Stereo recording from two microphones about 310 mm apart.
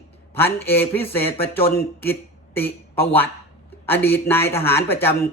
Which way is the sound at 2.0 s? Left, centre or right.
Centre.